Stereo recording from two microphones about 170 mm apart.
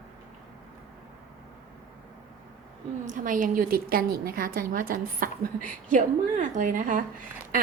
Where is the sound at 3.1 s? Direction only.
50° right (ahead or behind).